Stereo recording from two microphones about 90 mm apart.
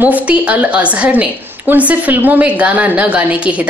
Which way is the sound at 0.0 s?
15° right (ahead or behind).